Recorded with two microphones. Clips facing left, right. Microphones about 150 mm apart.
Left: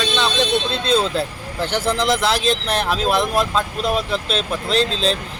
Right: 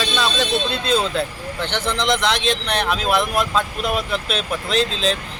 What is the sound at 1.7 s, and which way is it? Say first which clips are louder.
Speech: left 2 dB; 5° left (ahead or behind).